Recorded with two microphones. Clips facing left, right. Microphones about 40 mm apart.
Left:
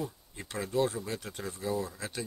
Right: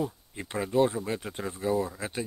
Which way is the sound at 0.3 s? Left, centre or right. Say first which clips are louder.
Right 2 dB; right.